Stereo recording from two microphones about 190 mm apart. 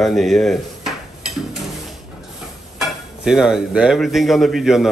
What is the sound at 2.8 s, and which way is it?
Speech, 5° right (ahead or behind).